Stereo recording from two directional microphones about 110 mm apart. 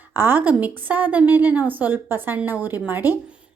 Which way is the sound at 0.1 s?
20° right (ahead or behind).